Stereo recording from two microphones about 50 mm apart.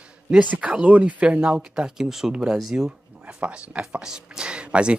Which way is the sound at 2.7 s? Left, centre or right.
Right.